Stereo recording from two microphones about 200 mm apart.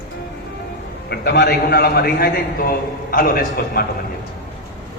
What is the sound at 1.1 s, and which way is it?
A man's voice, 55° left (ahead or behind).